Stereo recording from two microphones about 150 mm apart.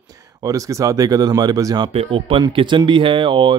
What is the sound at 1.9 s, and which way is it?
Speech, 40° right (ahead or behind).